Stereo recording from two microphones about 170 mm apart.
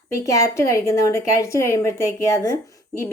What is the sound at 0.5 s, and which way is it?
Speech, 15° left (ahead or behind).